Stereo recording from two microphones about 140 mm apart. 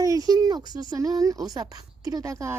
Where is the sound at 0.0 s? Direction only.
25° right (ahead or behind).